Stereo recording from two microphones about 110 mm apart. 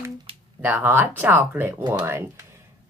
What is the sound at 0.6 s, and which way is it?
Speech, 20° right (ahead or behind).